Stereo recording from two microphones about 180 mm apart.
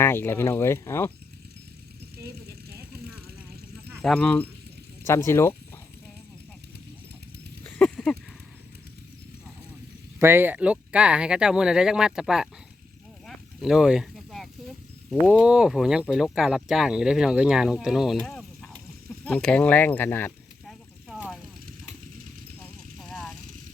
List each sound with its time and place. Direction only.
0.0 s speech: 10° left (ahead or behind)
2.1 s vehicle: 60° right (ahead or behind)
4.0 s speech: 5° left (ahead or behind)
7.6 s a sound: 5° left (ahead or behind)
10.2 s speech: 15° right (ahead or behind)
13.2 s a sound: centre (ahead or behind)
15.3 s speech: 5° right (ahead or behind); by 20.3 s 10° left (ahead or behind)
20.7 s a sound: centre (ahead or behind)
23.0 s vehicle: centre (ahead or behind)